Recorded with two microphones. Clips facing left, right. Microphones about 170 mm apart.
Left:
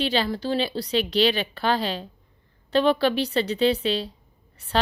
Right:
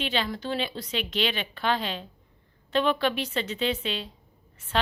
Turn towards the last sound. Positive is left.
turn(degrees=35)  # may be behind; listen again after turning